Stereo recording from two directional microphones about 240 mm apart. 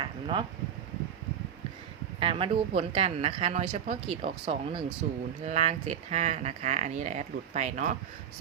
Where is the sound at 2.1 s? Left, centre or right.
Right.